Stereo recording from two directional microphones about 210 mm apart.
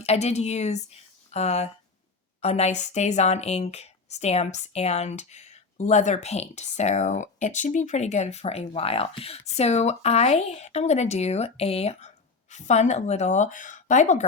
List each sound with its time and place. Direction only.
0.0 s speech: 30° left (ahead or behind)